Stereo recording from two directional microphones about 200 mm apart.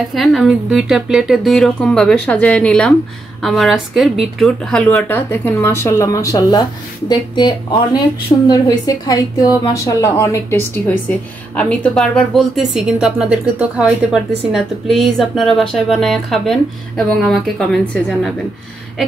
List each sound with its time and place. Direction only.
0.1 s a woman's voice: centre (ahead or behind)